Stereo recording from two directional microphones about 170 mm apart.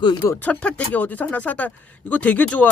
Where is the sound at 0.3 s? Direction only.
10° left (ahead or behind).